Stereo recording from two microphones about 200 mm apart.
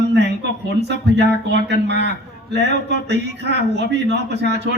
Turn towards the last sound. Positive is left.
turn(degrees=-55)  # may be behind; listen again after turning